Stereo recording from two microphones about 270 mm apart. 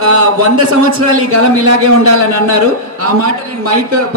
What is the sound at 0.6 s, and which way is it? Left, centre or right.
A man's voice, right.